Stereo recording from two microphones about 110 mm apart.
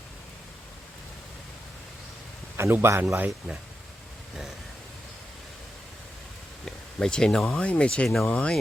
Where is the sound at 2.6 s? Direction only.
25° right (ahead or behind).